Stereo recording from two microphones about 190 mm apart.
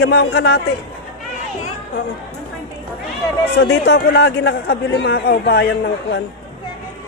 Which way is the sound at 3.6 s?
65° left (ahead or behind).